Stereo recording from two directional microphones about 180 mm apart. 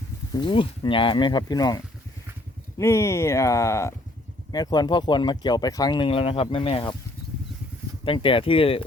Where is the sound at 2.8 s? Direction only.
15° left (ahead or behind).